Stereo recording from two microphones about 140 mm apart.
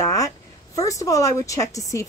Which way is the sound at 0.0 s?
25° left (ahead or behind).